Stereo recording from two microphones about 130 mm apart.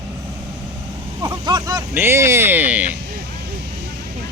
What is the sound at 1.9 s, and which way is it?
Speech, 20° right (ahead or behind).